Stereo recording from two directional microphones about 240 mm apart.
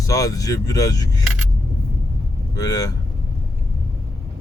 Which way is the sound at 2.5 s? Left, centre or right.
Centre.